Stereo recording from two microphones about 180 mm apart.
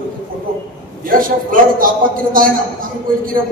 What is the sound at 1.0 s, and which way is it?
A man's voice, 50° right (ahead or behind).